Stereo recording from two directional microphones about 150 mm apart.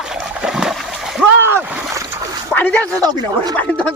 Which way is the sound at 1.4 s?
10° right (ahead or behind).